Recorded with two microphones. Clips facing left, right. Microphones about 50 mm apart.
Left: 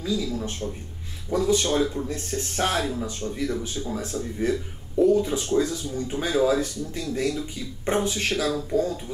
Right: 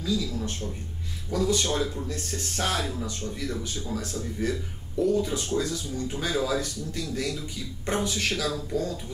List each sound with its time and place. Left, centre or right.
0.0 s speech: left